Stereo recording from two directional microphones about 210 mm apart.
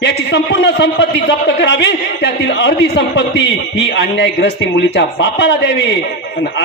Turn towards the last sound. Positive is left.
turn(degrees=55)  # may be behind; listen again after turning